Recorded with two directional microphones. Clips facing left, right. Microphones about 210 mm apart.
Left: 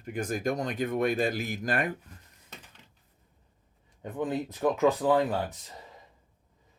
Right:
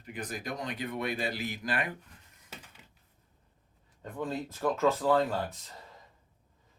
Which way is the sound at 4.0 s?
15° left (ahead or behind).